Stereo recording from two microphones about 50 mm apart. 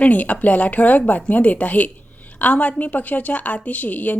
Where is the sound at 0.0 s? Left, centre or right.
Left.